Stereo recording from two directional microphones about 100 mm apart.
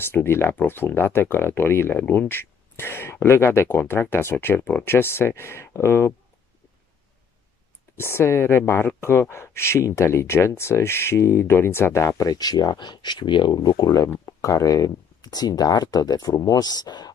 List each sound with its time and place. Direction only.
0.0 s speech: 25° left (ahead or behind)
8.0 s speech: 25° left (ahead or behind); by 17.1 s 40° left (ahead or behind)